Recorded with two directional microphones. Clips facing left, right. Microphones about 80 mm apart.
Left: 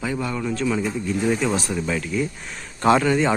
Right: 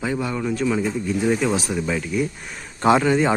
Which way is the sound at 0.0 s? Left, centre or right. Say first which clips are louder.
Right 1 dB; right.